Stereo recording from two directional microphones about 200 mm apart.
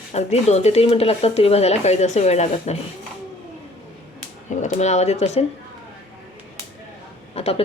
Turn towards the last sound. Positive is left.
turn(degrees=30)  # may be behind; listen again after turning